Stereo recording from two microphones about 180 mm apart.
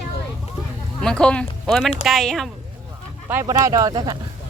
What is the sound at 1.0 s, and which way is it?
Speech, 5° left (ahead or behind).